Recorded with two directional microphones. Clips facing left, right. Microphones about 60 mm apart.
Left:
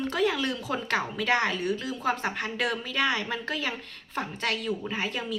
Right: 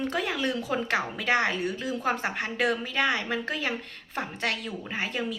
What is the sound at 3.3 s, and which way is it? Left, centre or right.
Speech, right.